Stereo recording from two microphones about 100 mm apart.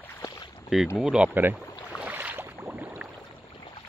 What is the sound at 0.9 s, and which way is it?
Speech, 10° right (ahead or behind).